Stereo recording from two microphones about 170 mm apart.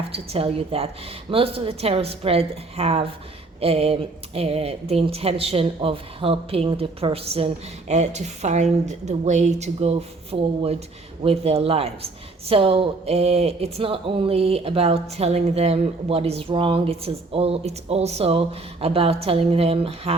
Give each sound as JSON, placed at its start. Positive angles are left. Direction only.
{"t": 0.1, "sound": "speech", "side_deg": -35}